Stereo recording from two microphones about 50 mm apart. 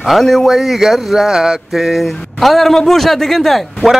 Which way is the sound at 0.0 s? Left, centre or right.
Centre.